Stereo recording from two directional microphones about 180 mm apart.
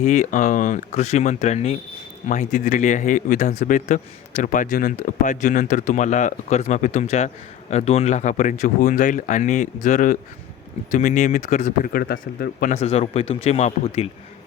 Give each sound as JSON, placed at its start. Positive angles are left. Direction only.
{"t": 0.0, "sound": "speech", "side_deg": 40}
{"t": 12.7, "sound": "speech", "side_deg": 35}